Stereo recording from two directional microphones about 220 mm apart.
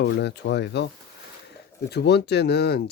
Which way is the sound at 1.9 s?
50° left (ahead or behind).